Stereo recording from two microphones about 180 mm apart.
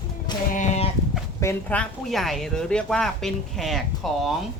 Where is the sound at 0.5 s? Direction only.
40° left (ahead or behind).